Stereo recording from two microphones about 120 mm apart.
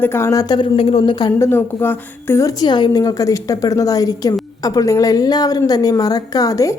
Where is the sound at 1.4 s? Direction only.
20° left (ahead or behind).